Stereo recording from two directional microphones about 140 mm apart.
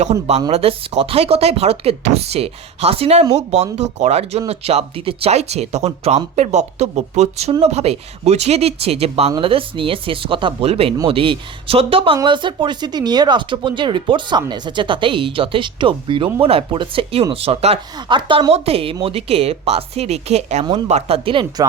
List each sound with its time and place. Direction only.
0.0 s speech: 50° right (ahead or behind)